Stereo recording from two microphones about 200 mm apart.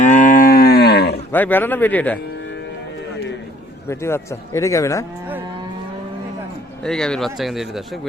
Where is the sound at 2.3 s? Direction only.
60° left (ahead or behind).